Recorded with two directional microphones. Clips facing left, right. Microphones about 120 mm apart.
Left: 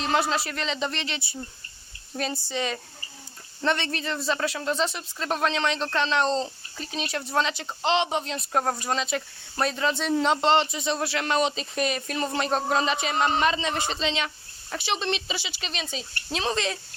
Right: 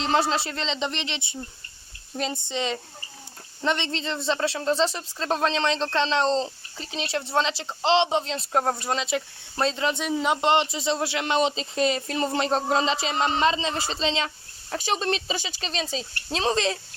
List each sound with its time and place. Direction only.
0.0 s speech: 25° right (ahead or behind); by 10.4 s 5° right (ahead or behind)
10.4 s speech: 20° right (ahead or behind)
14.7 s speech: 40° right (ahead or behind)